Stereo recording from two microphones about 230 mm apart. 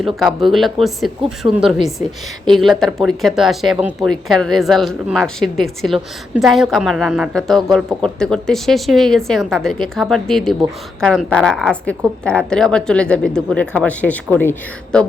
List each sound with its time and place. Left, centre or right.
0.0 s speech: centre